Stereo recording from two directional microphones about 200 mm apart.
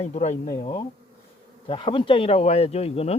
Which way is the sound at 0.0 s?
35° left (ahead or behind).